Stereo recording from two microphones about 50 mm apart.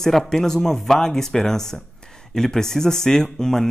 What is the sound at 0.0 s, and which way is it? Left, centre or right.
Speech, centre.